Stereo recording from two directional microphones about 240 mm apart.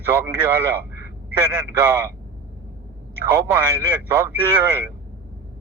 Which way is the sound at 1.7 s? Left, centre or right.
Centre.